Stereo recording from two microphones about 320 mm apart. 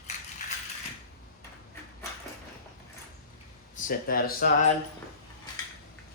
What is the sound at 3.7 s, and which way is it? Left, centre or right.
Speech, left.